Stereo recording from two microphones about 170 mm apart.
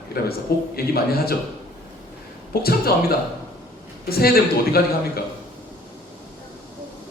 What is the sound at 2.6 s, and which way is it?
A man's voice, 65° left (ahead or behind).